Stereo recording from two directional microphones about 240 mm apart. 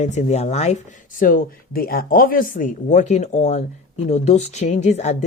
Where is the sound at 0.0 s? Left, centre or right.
Left.